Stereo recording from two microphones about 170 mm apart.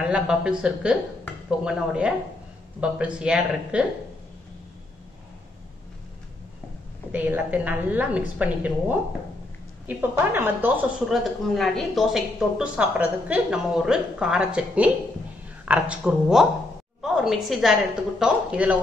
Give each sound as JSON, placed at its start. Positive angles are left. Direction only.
{"t": 0.0, "sound": "a woman's voice", "side_deg": -5}
{"t": 7.1, "sound": "a woman's voice", "side_deg": -10}